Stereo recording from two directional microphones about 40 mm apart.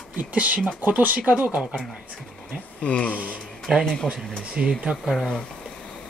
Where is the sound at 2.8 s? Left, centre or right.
Left.